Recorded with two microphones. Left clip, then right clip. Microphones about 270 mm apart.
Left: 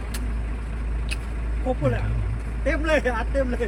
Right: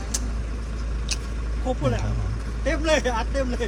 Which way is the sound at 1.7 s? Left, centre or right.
Centre.